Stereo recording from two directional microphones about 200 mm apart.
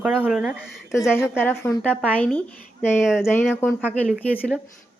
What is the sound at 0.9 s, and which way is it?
Speech, 15° left (ahead or behind).